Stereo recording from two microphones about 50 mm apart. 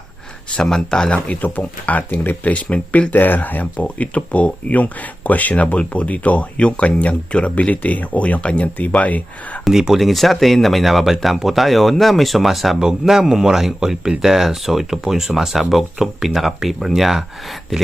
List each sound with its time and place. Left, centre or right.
0.6 s speech: centre
1.1 s speech: left
9.7 s speech: centre